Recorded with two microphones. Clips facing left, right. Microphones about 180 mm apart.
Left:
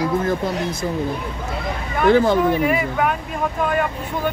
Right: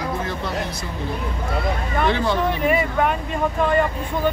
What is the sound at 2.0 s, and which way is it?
Speech, 45° left (ahead or behind).